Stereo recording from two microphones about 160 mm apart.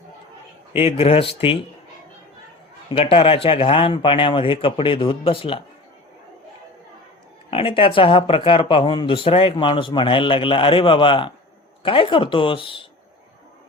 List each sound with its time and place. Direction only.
0.7 s speech: 35° left (ahead or behind)
2.9 s speech: 35° left (ahead or behind)
7.5 s speech: 35° left (ahead or behind)